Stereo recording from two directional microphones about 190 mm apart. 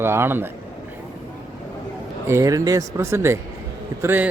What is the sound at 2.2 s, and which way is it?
Speech, 15° right (ahead or behind).